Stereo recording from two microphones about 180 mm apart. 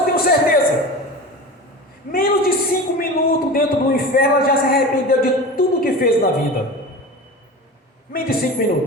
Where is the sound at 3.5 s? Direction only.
55° left (ahead or behind).